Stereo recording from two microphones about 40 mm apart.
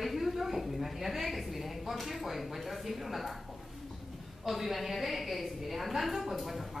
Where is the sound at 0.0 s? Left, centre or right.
Centre.